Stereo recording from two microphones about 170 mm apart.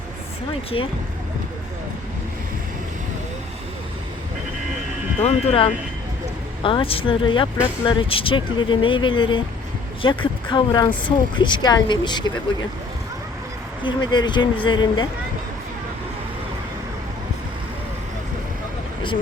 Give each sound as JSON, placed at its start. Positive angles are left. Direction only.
{"t": 0.7, "sound": "speech", "side_deg": 30}
{"t": 5.2, "sound": "speech", "side_deg": 30}
{"t": 13.8, "sound": "speech", "side_deg": 25}